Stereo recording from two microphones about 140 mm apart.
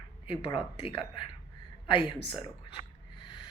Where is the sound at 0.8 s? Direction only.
40° left (ahead or behind).